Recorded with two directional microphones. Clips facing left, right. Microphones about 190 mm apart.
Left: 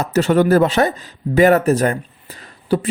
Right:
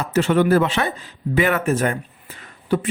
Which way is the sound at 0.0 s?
40° left (ahead or behind).